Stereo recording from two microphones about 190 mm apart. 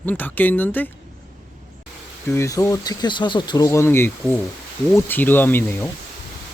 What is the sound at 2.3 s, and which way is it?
Speech, 15° left (ahead or behind).